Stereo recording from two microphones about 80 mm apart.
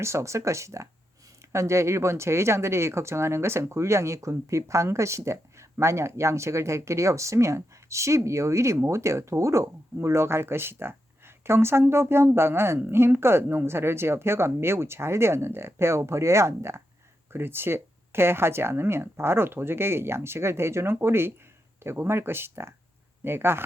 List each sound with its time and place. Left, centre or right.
0.0 s speech: right